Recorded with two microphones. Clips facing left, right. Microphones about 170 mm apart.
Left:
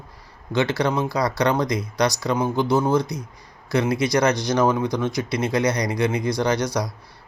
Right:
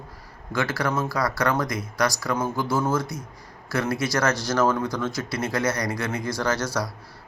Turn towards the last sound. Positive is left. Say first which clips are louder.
# left 4 dB
turn(degrees=15)  # may be behind; listen again after turning